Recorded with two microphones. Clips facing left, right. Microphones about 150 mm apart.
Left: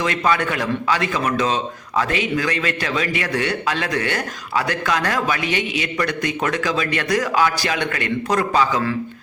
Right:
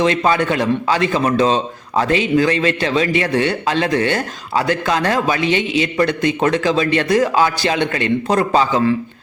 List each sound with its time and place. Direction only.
0.0 s a man's voice: 25° right (ahead or behind)